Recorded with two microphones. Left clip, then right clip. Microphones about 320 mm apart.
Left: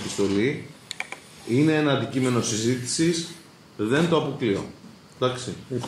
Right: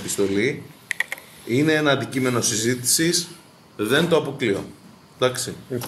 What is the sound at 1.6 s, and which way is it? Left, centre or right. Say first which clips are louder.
Speech: right 3 dB; right.